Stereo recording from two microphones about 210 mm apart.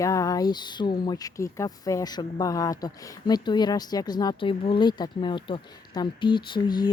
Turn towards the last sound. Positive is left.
turn(degrees=20)  # may be behind; listen again after turning